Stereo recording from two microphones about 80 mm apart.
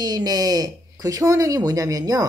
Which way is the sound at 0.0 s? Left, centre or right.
Right.